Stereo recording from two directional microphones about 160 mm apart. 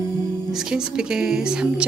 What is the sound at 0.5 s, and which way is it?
A woman's voice, 5° right (ahead or behind).